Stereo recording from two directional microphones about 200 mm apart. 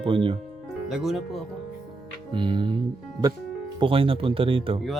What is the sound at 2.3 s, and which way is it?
Speech, 25° right (ahead or behind).